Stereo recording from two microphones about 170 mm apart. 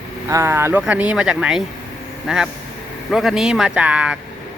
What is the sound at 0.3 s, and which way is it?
A man's voice, 15° right (ahead or behind).